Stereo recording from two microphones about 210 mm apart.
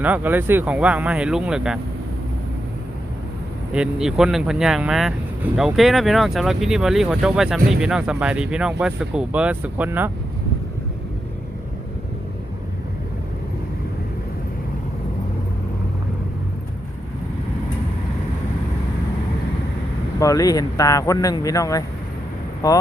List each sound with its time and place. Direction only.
0.0 s speech: 10° right (ahead or behind)
3.7 s speech: 5° right (ahead or behind)
20.1 s speech: 15° left (ahead or behind)